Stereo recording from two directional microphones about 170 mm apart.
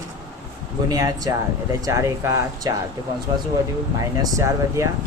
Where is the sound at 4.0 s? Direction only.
20° right (ahead or behind).